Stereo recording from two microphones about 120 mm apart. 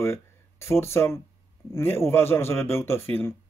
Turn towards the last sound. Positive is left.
turn(degrees=20)  # may be behind; listen again after turning